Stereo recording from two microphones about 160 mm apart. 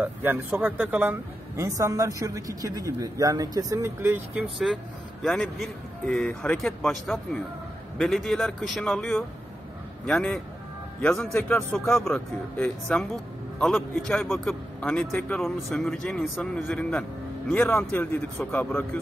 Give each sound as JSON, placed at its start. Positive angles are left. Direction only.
{"t": 0.0, "sound": "a woman's voice", "side_deg": -10}
{"t": 4.4, "sound": "speech", "side_deg": 0}
{"t": 11.7, "sound": "speech", "side_deg": 0}